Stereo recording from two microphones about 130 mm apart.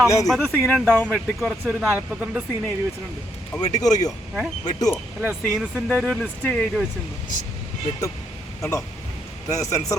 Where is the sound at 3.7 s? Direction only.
65° left (ahead or behind).